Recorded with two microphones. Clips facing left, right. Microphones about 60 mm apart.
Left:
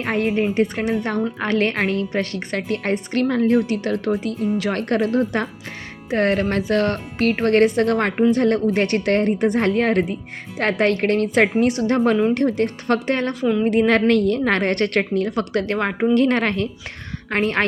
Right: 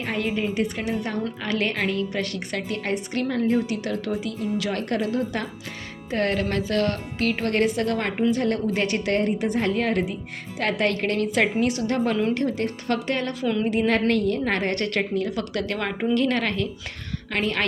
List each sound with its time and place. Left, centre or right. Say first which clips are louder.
0.0 s a woman's voice: left 6 dB; left
6.1 s a woman's voice: left 5 dB; left
13.7 s a woman's voice: left 6 dB; left
15.5 s a woman's voice: left 5 dB; left